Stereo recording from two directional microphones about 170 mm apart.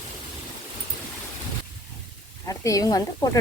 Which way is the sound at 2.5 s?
20° left (ahead or behind).